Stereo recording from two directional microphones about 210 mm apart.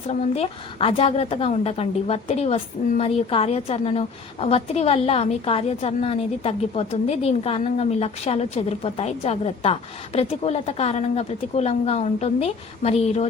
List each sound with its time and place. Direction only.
0.1 s a woman's voice: 25° left (ahead or behind)